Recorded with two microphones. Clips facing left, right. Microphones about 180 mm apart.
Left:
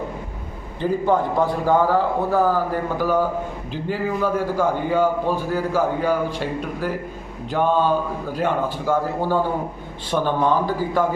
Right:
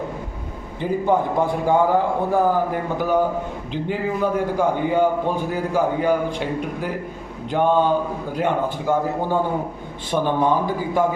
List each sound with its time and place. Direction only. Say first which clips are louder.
0.8 s a man's voice: even; 15° right (ahead or behind)